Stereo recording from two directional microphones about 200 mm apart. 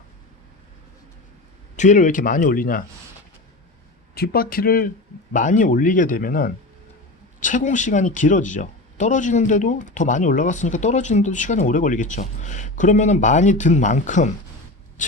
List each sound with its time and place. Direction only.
1.7 s speech: 40° left (ahead or behind)
4.1 s speech: 50° left (ahead or behind)